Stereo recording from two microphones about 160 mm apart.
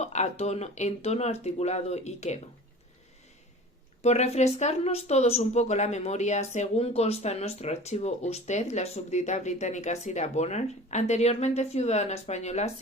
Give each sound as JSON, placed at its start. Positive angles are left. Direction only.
{"t": 0.0, "sound": "a woman's voice", "side_deg": 45}
{"t": 4.0, "sound": "a woman's voice", "side_deg": 45}